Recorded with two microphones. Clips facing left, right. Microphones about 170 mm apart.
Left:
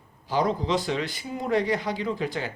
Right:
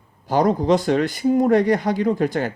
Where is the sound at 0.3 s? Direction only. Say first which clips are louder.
Right 8 dB; 45° right (ahead or behind).